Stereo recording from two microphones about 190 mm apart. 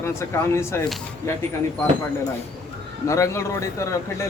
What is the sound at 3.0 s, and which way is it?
Speech, 15° left (ahead or behind).